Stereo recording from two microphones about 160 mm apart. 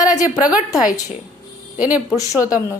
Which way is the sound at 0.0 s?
20° left (ahead or behind).